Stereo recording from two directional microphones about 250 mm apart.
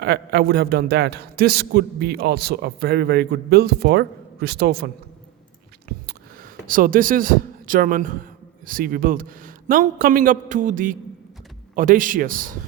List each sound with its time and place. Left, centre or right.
0.0 s a man's voice: right
6.7 s a man's voice: right